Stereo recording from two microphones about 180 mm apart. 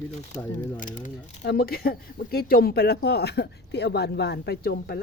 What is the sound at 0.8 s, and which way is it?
Speech, 45° left (ahead or behind).